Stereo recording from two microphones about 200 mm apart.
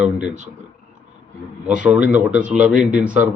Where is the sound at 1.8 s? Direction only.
5° right (ahead or behind).